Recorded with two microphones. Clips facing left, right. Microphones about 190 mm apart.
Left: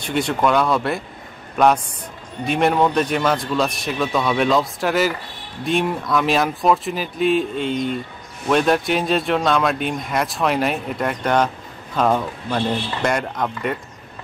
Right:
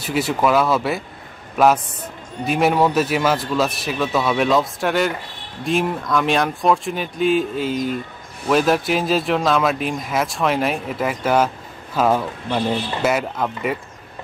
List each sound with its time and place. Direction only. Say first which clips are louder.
0.0 s speech: even; 5° right (ahead or behind)